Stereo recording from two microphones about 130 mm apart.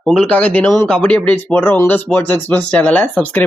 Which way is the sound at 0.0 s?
Centre (ahead or behind).